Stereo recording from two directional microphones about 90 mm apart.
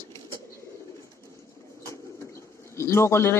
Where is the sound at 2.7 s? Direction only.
30° left (ahead or behind).